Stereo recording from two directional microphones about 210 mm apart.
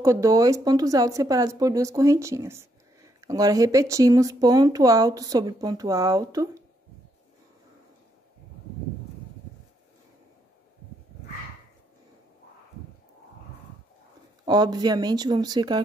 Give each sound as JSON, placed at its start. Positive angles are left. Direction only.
{"t": 0.0, "sound": "speech", "side_deg": -15}
{"t": 14.4, "sound": "speech", "side_deg": -20}